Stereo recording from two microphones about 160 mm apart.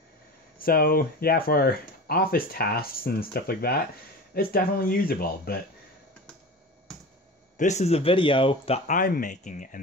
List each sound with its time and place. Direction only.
0.6 s speech: 65° left (ahead or behind)
7.5 s speech: 45° left (ahead or behind)